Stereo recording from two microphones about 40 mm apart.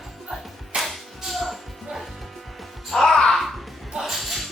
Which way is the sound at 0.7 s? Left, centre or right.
Right.